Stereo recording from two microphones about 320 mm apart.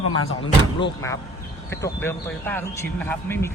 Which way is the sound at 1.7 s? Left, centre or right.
Centre.